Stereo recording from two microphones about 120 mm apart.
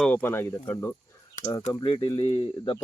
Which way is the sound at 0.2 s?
20° left (ahead or behind).